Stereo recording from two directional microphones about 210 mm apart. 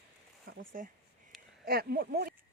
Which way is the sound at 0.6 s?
40° right (ahead or behind).